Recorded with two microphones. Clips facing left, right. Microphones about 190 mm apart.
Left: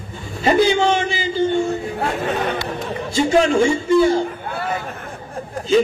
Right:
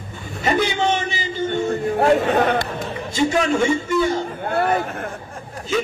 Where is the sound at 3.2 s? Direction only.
30° left (ahead or behind).